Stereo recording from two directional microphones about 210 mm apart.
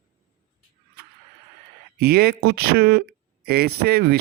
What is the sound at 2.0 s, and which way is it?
Speech, 50° right (ahead or behind).